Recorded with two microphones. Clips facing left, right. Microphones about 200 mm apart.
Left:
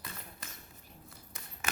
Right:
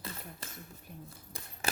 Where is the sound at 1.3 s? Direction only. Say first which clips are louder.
Right 5 dB; 35° right (ahead or behind).